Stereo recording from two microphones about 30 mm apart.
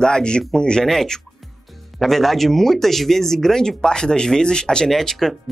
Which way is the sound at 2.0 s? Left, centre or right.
Centre.